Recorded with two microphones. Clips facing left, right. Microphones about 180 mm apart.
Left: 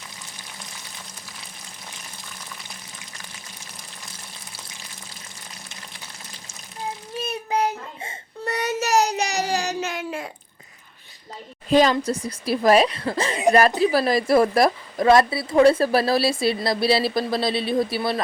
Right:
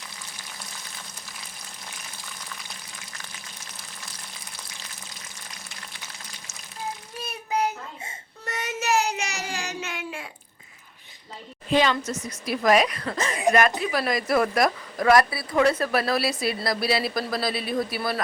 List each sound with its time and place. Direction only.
7.2 s child singing: 25° left (ahead or behind)
8.4 s child singing: 35° left (ahead or behind)
11.7 s speech: 40° left (ahead or behind)